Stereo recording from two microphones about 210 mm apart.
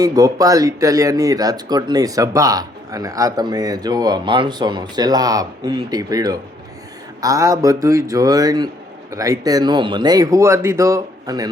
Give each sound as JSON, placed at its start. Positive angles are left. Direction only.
{"t": 0.0, "sound": "speech", "side_deg": -15}